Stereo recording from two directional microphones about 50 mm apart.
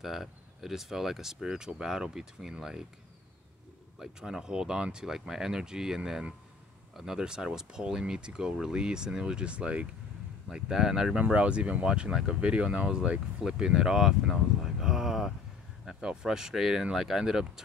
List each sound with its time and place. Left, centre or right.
0.0 s speech: centre
4.0 s speech: centre
13.4 s speech: centre